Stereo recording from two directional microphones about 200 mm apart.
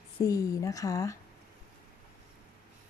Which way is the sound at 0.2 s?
15° left (ahead or behind).